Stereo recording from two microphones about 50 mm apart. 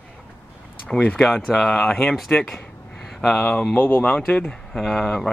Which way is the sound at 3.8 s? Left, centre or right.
Left.